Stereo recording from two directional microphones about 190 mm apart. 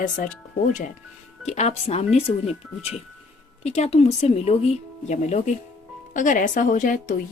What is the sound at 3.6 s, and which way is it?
Speech, 35° left (ahead or behind).